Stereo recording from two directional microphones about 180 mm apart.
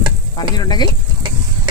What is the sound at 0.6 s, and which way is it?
Speech, 25° left (ahead or behind).